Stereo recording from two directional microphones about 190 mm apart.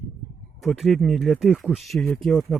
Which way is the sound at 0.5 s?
Centre (ahead or behind).